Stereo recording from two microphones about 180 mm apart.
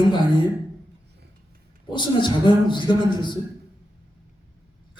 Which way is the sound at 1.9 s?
25° left (ahead or behind).